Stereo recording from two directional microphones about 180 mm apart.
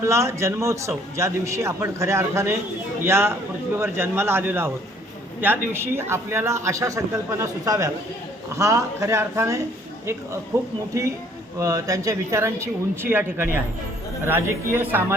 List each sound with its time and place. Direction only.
0.0 s a man's voice: 15° right (ahead or behind)